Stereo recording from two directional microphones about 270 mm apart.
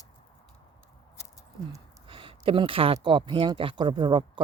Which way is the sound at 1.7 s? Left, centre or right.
Centre.